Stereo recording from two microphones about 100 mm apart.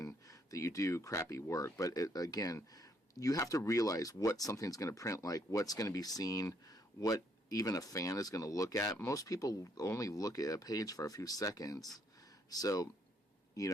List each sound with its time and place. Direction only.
0.0 s speech: 35° left (ahead or behind)